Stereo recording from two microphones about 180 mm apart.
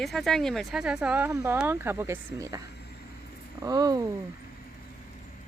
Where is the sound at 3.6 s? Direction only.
20° right (ahead or behind).